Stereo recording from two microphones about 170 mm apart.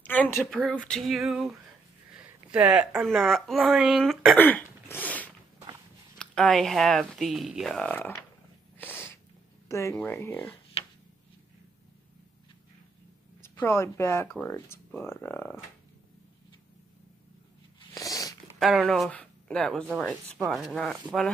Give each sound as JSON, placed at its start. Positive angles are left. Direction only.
{"t": 0.0, "sound": "a sound", "side_deg": 10}
{"t": 0.5, "sound": "speech", "side_deg": 0}
{"t": 2.5, "sound": "speech", "side_deg": -5}
{"t": 4.4, "sound": "throat clearing", "side_deg": 10}
{"t": 6.1, "sound": "speech", "side_deg": 0}
{"t": 8.7, "sound": "cat", "side_deg": 15}
{"t": 9.7, "sound": "speech", "side_deg": 15}
{"t": 13.4, "sound": "speech", "side_deg": 15}
{"t": 17.9, "sound": "a sound", "side_deg": 20}
{"t": 18.6, "sound": "speech", "side_deg": 0}